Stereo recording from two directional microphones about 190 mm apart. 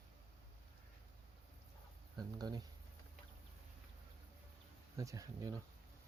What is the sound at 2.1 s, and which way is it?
Speech, 20° right (ahead or behind).